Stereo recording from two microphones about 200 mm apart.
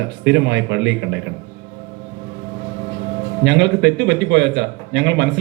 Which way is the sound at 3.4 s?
60° right (ahead or behind).